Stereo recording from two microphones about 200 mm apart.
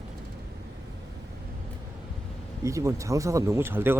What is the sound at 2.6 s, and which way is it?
Speech, 15° right (ahead or behind).